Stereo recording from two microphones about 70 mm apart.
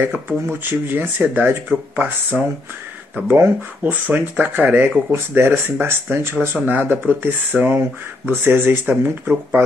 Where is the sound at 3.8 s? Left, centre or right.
Right.